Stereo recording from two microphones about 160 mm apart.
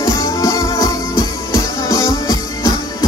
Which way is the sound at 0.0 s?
20° left (ahead or behind).